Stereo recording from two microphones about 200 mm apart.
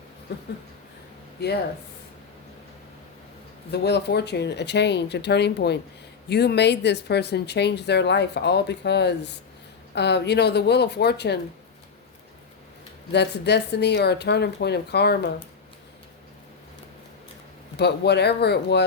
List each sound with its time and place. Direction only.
0.3 s speech: 55° left (ahead or behind)
3.7 s speech: 55° left (ahead or behind)
13.1 s speech: 55° left (ahead or behind)
17.7 s speech: 55° left (ahead or behind)